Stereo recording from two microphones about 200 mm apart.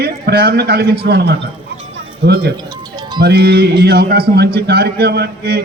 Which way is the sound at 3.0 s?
20° right (ahead or behind).